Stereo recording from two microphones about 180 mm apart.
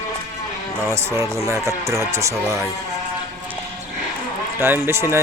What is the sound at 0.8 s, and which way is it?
Speech, 15° right (ahead or behind).